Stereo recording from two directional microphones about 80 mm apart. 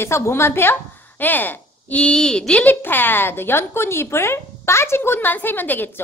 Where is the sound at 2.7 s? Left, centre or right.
Left.